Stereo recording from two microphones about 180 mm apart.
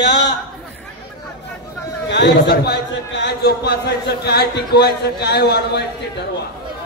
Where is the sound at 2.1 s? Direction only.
65° left (ahead or behind).